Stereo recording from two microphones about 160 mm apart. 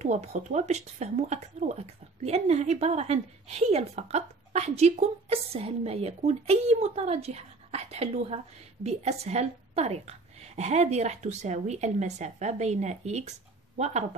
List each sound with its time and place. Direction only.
0.0 s speech: 45° right (ahead or behind)